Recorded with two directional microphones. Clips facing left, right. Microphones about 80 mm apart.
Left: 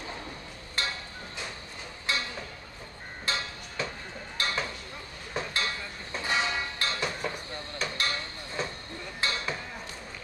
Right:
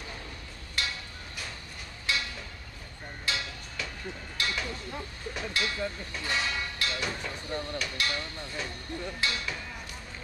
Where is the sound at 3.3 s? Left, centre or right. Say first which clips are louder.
Left 1 dB; left.